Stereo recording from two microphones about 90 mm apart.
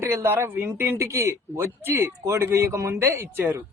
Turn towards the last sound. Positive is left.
turn(degrees=-25)  # may be behind; listen again after turning